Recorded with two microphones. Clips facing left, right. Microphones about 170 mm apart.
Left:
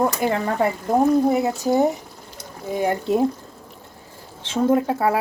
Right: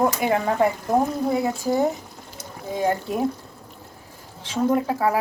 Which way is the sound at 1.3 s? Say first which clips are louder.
Left 3 dB; 20° left (ahead or behind).